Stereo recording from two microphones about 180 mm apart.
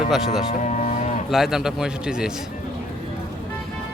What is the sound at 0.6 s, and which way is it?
Cattle, 40° left (ahead or behind).